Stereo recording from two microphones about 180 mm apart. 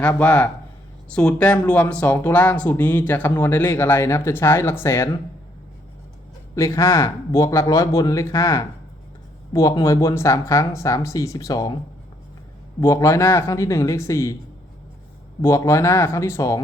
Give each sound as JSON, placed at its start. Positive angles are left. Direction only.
{"t": 0.0, "sound": "speech", "side_deg": 10}
{"t": 6.6, "sound": "speech", "side_deg": 15}
{"t": 12.8, "sound": "speech", "side_deg": 15}
{"t": 15.4, "sound": "speech", "side_deg": 15}